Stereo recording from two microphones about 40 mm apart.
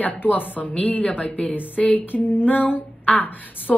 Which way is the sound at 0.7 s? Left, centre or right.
Left.